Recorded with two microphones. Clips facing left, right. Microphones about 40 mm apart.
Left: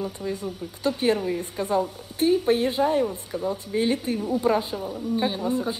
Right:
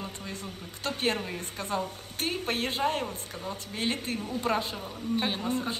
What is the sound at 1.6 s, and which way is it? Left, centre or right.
Speech, centre.